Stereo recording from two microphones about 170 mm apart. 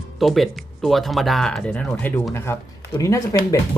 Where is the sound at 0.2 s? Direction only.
Centre (ahead or behind).